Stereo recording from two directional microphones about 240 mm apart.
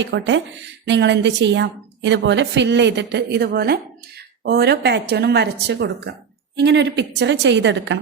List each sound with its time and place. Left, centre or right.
0.0 s a woman's voice: right